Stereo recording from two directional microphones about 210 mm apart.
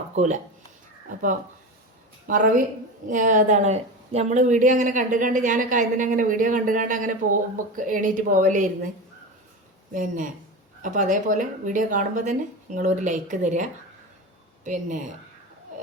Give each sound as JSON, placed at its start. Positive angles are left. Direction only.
{"t": 2.2, "sound": "a woman's voice", "side_deg": -40}
{"t": 9.9, "sound": "a woman's voice", "side_deg": -40}